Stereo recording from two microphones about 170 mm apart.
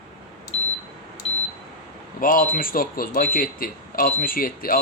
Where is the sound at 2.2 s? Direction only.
55° left (ahead or behind).